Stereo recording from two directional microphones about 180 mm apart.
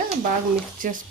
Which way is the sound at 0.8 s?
50° right (ahead or behind).